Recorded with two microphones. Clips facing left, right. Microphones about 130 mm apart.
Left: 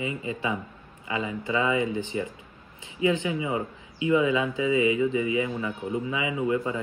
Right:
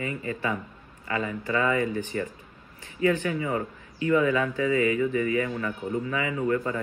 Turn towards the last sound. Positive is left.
turn(degrees=10)  # may be behind; listen again after turning